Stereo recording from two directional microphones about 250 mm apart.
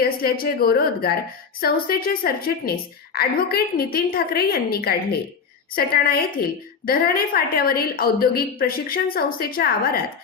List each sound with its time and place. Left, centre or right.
0.0 s a woman's voice: left